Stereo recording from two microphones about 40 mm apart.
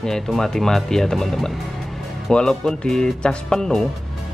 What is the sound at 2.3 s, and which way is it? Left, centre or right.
Speech, centre.